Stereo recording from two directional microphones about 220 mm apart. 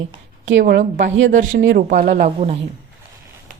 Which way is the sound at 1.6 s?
50° right (ahead or behind).